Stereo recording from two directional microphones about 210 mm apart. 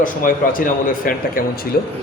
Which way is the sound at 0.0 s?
40° left (ahead or behind).